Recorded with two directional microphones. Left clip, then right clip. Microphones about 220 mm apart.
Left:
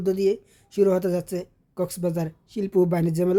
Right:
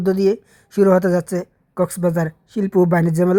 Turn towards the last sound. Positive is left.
turn(degrees=-15)  # may be behind; listen again after turning